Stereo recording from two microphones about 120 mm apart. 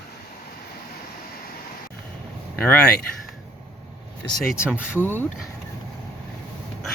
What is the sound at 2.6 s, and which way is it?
Speech, 15° left (ahead or behind).